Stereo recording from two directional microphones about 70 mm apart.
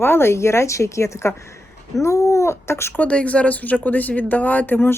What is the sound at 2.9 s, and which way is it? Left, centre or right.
Speech, centre.